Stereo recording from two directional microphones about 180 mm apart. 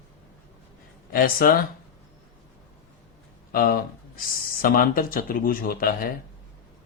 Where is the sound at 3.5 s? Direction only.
50° left (ahead or behind).